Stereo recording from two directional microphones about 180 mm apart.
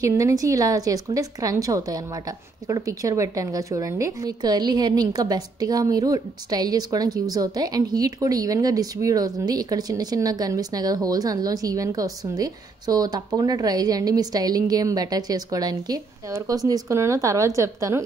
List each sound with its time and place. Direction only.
0.0 s a woman's voice: 20° right (ahead or behind)